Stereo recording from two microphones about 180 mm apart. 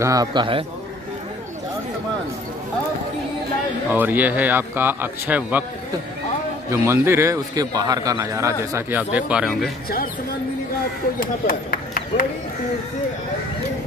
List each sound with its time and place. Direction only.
0.0 s a man's voice: 20° right (ahead or behind)
3.9 s a man's voice: 10° right (ahead or behind)
6.7 s a man's voice: 15° right (ahead or behind)
11.1 s speech: 50° left (ahead or behind)